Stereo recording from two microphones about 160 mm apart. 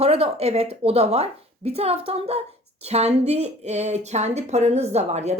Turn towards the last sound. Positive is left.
turn(degrees=-45)  # may be behind; listen again after turning